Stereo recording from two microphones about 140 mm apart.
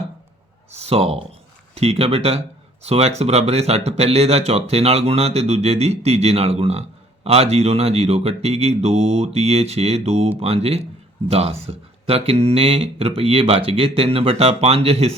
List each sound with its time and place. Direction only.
0.7 s speech: 45° right (ahead or behind)